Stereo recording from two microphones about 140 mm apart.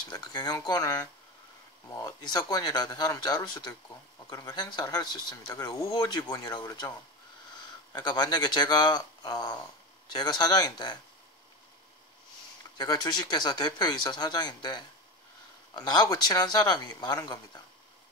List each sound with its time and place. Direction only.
0.1 s speech: 30° left (ahead or behind)
8.0 s speech: 30° left (ahead or behind)
12.7 s speech: 30° left (ahead or behind)